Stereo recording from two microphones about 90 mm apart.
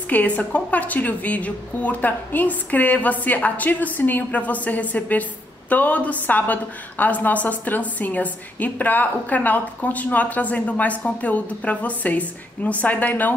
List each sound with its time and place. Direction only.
0.1 s a woman's voice: 15° left (ahead or behind)